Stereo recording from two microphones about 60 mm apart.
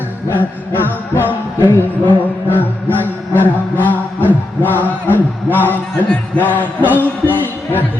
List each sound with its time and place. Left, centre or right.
0.3 s music: left
4.3 s a sound: left
5.1 s music: left